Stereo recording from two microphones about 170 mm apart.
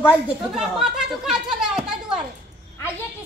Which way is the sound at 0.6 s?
5° right (ahead or behind).